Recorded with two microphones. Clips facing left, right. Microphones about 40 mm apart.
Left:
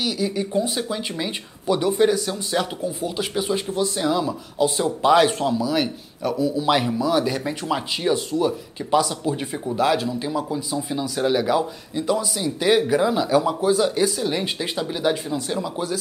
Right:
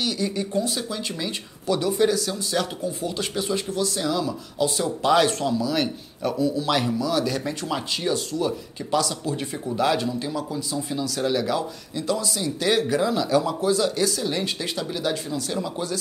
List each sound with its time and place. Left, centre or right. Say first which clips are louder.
0.0 s speech: left 2 dB; centre
3.0 s speech: left 4 dB; centre
6.6 s speech: left 3 dB; centre